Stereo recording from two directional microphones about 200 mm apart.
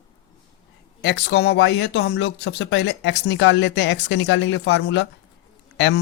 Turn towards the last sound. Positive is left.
turn(degrees=60)  # may be behind; listen again after turning